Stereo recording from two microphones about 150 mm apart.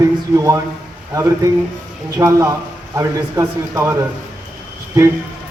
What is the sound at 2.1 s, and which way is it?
A man's voice, 20° right (ahead or behind).